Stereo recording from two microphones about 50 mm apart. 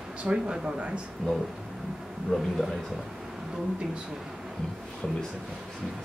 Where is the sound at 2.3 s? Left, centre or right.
Centre.